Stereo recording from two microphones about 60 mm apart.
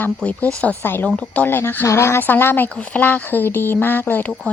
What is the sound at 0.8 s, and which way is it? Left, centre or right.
Speech, left.